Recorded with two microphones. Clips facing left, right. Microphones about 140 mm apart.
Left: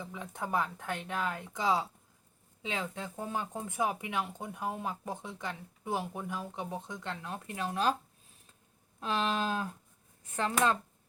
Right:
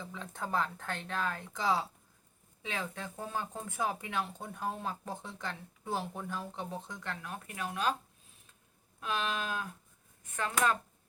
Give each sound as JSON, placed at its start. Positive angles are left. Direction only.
{"t": 0.0, "sound": "speech", "side_deg": 15}
{"t": 9.0, "sound": "speech", "side_deg": 30}